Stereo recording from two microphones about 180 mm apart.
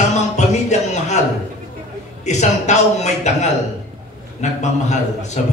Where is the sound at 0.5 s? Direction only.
40° left (ahead or behind).